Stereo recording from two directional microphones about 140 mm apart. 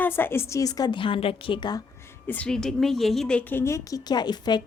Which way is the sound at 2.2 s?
10° left (ahead or behind).